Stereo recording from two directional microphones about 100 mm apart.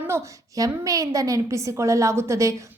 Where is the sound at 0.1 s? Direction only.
30° right (ahead or behind).